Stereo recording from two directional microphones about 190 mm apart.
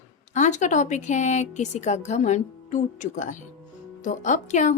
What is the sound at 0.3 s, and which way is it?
Speech, 40° left (ahead or behind).